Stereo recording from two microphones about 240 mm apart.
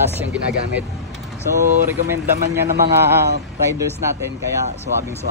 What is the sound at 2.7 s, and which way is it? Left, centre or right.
Speech, right.